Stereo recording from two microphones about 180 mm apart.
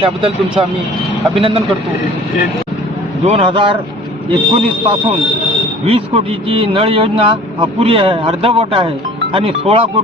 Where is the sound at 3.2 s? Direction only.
30° right (ahead or behind).